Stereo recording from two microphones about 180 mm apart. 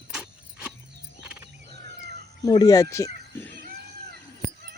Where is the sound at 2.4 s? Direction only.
20° left (ahead or behind).